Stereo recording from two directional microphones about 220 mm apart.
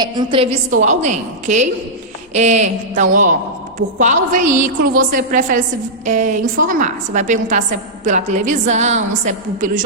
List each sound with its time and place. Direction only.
0.0 s a woman's voice: 20° right (ahead or behind)